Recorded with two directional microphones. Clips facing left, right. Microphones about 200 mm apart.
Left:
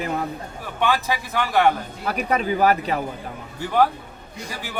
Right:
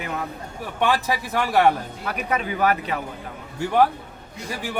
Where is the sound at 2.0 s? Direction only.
35° left (ahead or behind).